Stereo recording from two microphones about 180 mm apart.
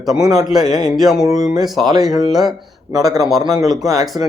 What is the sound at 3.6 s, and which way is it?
Speech, centre (ahead or behind).